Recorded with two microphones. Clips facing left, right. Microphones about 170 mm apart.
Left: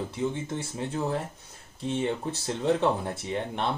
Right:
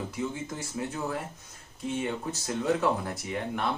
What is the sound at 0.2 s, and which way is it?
Speech, 30° left (ahead or behind).